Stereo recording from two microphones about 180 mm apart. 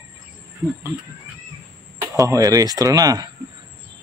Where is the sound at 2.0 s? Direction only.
20° right (ahead or behind).